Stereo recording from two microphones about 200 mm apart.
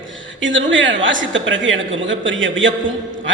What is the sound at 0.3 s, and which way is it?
A woman's voice, 70° right (ahead or behind).